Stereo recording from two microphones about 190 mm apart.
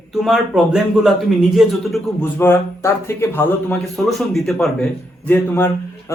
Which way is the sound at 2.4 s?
10° left (ahead or behind).